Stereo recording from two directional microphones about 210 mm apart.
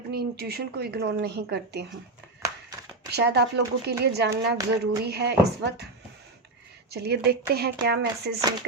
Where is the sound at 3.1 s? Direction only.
50° right (ahead or behind).